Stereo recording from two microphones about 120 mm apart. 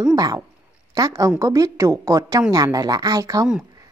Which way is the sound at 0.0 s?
30° right (ahead or behind).